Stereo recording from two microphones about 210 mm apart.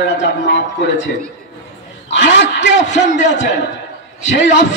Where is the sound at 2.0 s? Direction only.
60° left (ahead or behind).